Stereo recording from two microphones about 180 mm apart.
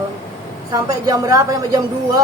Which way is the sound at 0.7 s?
20° right (ahead or behind).